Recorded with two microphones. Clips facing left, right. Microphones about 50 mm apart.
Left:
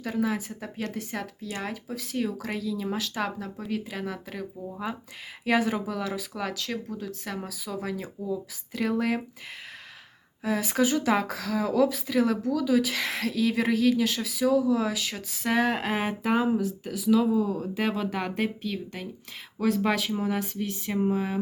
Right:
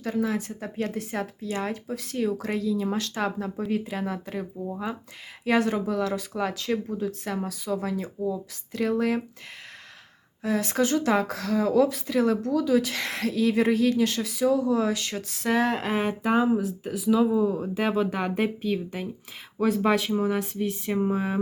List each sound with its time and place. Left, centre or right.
0.0 s speech: centre
0.9 s speech: centre
5.5 s speech: centre
10.4 s speech: centre
17.3 s speech: right
17.7 s speech: centre
19.6 s speech: centre